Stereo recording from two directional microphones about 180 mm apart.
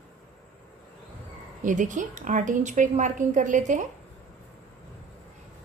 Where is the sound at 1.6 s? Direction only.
45° right (ahead or behind).